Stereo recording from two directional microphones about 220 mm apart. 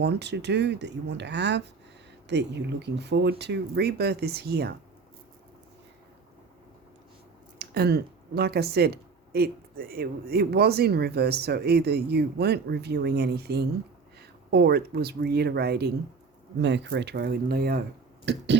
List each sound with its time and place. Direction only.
0.0 s speech: 50° right (ahead or behind)
7.6 s speech: 45° right (ahead or behind)